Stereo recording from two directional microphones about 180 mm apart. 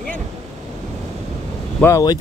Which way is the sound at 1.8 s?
15° left (ahead or behind).